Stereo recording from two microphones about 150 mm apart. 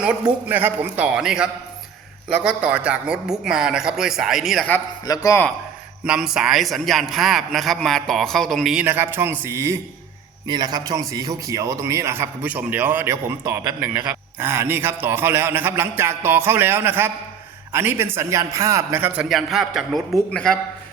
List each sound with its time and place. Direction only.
0.0 s a man's voice: 10° right (ahead or behind)
5.0 s speech: 25° left (ahead or behind)
6.1 s a man's voice: 5° right (ahead or behind)